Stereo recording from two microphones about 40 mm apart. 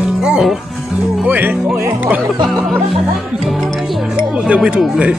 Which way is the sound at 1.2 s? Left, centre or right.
Right.